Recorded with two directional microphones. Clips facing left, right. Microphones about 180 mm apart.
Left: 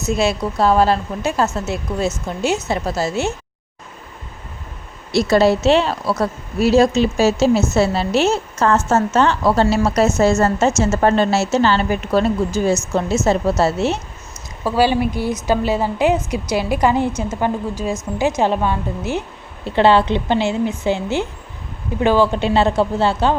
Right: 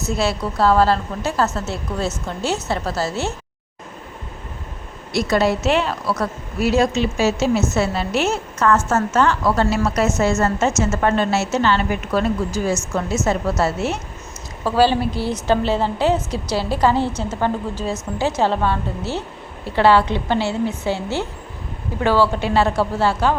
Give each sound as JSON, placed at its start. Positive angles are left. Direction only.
{"t": 0.0, "sound": "speech", "side_deg": 15}
{"t": 5.1, "sound": "a woman's voice", "side_deg": 30}
{"t": 14.6, "sound": "a woman's voice", "side_deg": 15}